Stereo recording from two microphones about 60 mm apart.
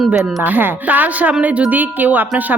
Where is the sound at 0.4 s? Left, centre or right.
Right.